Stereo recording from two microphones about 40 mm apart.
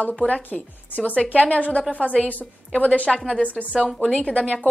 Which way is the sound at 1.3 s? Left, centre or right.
Left.